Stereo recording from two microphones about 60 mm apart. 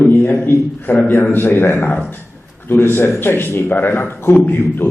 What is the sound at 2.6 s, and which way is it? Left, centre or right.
A man's voice, left.